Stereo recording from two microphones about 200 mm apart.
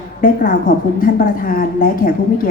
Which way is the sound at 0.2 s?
45° left (ahead or behind).